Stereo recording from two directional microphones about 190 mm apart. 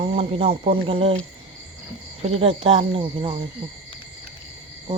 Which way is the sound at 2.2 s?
30° right (ahead or behind).